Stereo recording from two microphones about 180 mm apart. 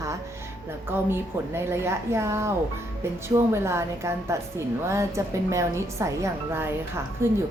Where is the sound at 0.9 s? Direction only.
15° right (ahead or behind).